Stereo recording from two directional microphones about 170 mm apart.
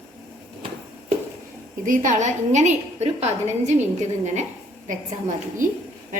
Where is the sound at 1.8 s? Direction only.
50° right (ahead or behind).